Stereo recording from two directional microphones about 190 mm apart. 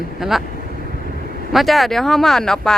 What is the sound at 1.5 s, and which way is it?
Speech, centre (ahead or behind).